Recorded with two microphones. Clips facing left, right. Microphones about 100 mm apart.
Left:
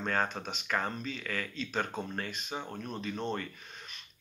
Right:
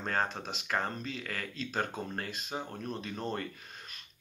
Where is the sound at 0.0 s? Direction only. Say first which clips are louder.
Left 1 dB; 30° right (ahead or behind).